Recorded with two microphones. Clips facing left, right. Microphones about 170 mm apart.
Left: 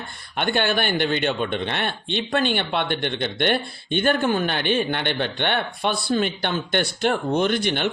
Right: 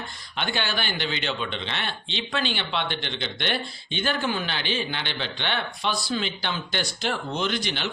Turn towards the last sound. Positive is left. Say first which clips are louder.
# left 6 dB
turn(degrees=55)  # may be behind; listen again after turning